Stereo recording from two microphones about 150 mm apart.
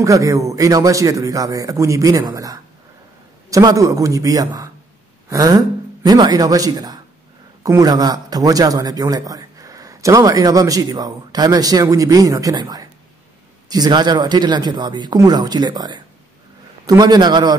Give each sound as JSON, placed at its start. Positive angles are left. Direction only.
{"t": 0.0, "sound": "a man's voice", "side_deg": -20}